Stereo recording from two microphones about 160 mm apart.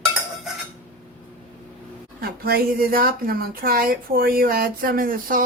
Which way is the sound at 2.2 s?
70° right (ahead or behind).